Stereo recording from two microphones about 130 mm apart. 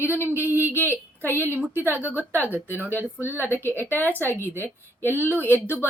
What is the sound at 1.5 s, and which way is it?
A woman's voice, 15° right (ahead or behind).